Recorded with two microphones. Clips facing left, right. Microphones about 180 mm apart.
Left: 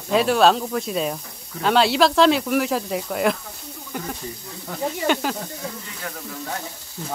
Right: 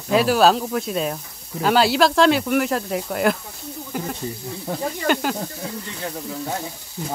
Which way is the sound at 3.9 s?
5° right (ahead or behind).